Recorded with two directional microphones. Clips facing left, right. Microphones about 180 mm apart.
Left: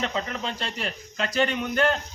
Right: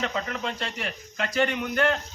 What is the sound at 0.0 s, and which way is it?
Speech, 30° left (ahead or behind).